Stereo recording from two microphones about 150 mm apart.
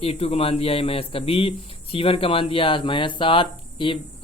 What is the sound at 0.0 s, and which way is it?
Speech, 40° left (ahead or behind).